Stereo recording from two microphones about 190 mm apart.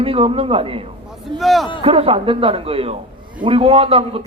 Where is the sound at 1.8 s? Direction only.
30° right (ahead or behind).